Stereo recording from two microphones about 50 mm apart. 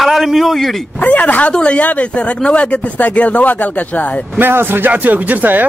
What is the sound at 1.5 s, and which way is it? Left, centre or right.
Speech, centre.